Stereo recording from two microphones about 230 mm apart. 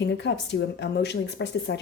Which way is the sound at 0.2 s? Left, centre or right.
Left.